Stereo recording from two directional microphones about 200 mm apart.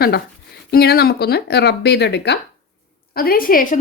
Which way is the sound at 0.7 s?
50° left (ahead or behind).